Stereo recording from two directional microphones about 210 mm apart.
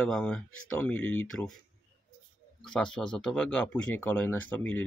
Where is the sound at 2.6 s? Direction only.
5° left (ahead or behind).